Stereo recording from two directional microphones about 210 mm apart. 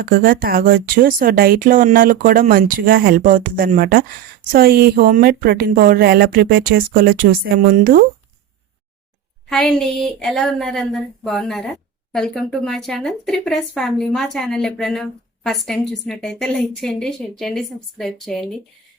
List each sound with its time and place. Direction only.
0.1 s speech: 40° right (ahead or behind)
9.5 s a woman's voice: centre (ahead or behind)